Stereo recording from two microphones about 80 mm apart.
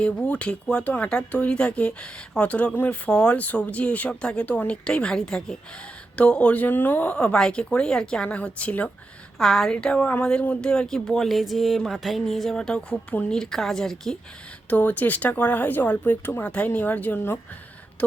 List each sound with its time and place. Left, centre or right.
0.0 s speech: centre
9.4 s a woman's voice: centre
14.7 s speech: centre